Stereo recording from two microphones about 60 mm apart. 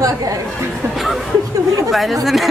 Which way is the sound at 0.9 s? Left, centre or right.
Centre.